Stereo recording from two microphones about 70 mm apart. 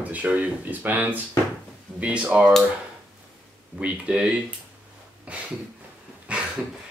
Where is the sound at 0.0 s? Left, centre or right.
Right.